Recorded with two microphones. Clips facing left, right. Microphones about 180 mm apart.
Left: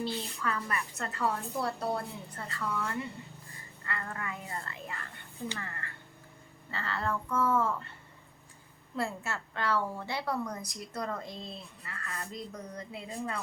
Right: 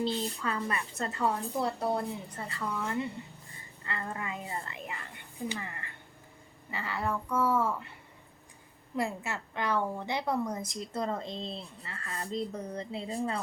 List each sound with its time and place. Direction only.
0.0 s a woman's voice: 25° right (ahead or behind)
9.0 s a woman's voice: 15° right (ahead or behind)